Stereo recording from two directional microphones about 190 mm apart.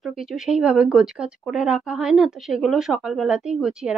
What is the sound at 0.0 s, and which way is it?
A woman's voice, centre (ahead or behind).